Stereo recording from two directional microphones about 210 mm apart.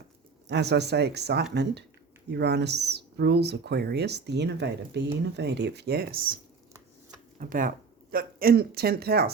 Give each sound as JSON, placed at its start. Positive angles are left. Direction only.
{"t": 0.4, "sound": "speech", "side_deg": -55}